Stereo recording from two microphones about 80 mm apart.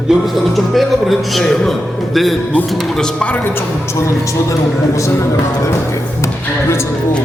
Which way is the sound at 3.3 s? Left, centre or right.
Left.